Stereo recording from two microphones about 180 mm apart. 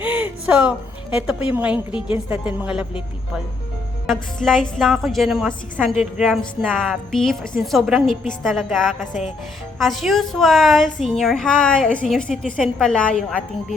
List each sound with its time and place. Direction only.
0.0 s a sound: 10° right (ahead or behind)
1.1 s a woman's voice: 5° right (ahead or behind)
4.0 s speech: 5° left (ahead or behind)